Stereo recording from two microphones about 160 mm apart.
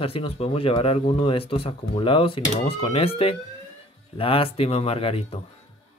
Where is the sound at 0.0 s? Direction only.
35° left (ahead or behind).